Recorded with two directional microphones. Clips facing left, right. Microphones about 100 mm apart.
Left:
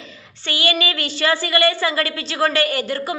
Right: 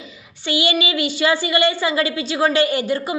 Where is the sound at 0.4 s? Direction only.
20° right (ahead or behind).